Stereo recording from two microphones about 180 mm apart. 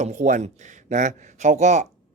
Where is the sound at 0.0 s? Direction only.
40° right (ahead or behind).